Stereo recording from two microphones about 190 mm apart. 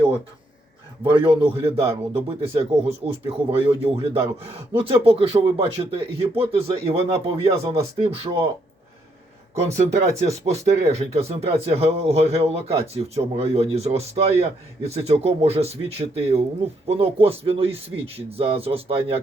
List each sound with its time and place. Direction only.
1.1 s speech: 25° right (ahead or behind)
9.6 s speech: 35° right (ahead or behind)